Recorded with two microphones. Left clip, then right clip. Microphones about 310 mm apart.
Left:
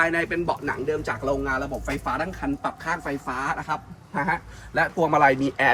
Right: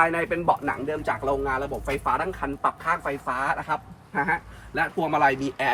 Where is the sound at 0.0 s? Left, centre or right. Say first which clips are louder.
Right 1 dB; centre.